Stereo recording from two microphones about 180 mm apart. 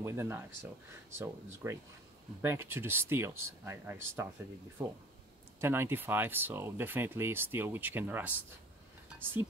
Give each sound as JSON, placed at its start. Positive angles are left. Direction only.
{"t": 0.0, "sound": "speech", "side_deg": -15}